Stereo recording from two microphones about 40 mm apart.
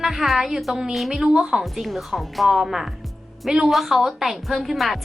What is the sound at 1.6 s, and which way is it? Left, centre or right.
A woman's voice, centre.